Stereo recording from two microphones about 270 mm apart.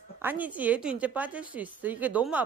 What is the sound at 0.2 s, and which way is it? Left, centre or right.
Speech, centre.